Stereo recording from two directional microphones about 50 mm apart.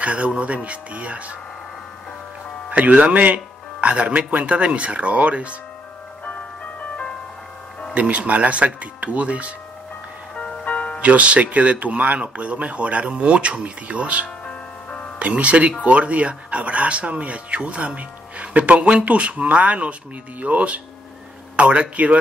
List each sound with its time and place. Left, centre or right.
0.0 s speech: right
2.7 s speech: right
6.2 s music: left
7.9 s speech: right
10.3 s music: left
11.0 s speech: right
14.4 s music: left
15.1 s speech: right